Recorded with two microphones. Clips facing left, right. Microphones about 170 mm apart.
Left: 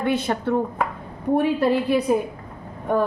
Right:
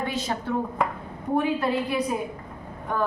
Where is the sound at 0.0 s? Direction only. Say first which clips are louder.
Left 6 dB; 60° left (ahead or behind).